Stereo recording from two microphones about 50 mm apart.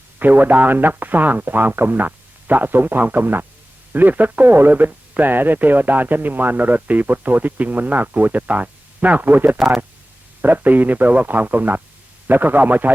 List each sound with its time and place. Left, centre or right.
0.2 s speech: right
9.6 s speech: centre
10.4 s speech: right